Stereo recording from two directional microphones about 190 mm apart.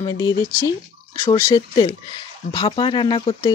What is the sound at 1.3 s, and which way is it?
Speech, 25° left (ahead or behind).